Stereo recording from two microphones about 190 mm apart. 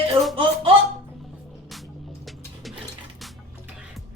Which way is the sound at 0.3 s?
30° right (ahead or behind).